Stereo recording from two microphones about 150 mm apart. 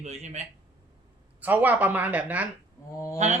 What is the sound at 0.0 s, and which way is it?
Speech, 50° right (ahead or behind).